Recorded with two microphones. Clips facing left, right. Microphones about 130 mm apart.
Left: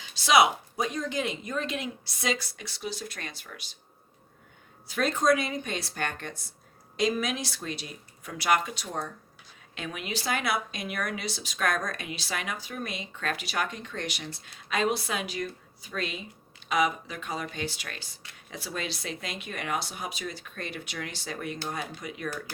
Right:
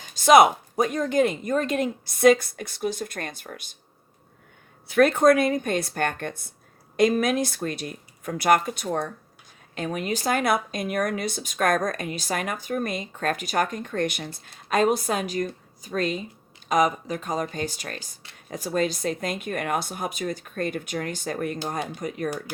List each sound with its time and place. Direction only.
0.0 s speech: 50° right (ahead or behind)
4.9 s speech: 60° right (ahead or behind)
9.7 s speech: 45° right (ahead or behind)